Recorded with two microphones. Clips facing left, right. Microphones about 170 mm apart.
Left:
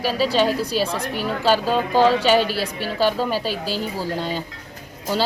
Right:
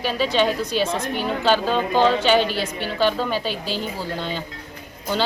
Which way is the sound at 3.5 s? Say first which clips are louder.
Left 1 dB; 40° left (ahead or behind).